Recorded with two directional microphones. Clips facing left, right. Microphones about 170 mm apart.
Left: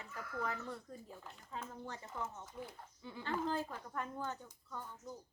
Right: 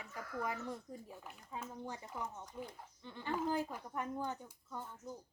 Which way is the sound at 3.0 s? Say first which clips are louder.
Left 2 dB; 5° left (ahead or behind).